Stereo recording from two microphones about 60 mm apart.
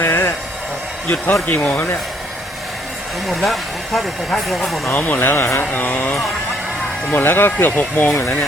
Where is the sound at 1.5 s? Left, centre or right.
Centre.